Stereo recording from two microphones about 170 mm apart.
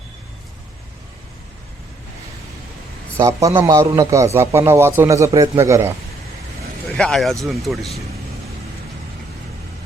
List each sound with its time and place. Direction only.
3.2 s a man's voice: 20° right (ahead or behind)
6.9 s speech: 5° left (ahead or behind)